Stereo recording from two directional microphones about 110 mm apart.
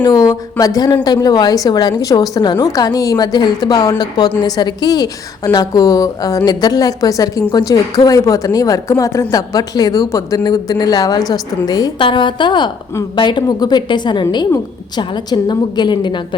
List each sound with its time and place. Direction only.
0.0 s a woman's voice: 35° left (ahead or behind)